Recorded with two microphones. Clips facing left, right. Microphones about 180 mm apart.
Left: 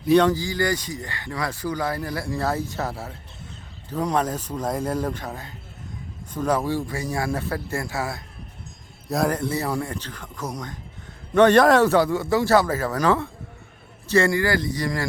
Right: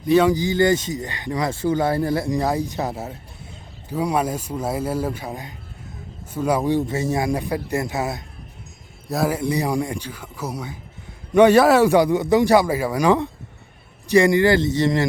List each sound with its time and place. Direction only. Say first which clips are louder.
0.0 s speech: right 1 dB; 5° right (ahead or behind)
0.3 s speech: right 6 dB; 20° right (ahead or behind)
3.8 s a man's voice: right 2 dB; 10° right (ahead or behind)
9.0 s a man's voice: right 1 dB; centre (ahead or behind); by 15.0 s 25° right (ahead or behind)